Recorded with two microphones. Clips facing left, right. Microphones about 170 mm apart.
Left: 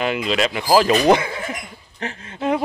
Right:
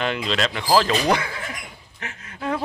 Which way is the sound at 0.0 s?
5° left (ahead or behind).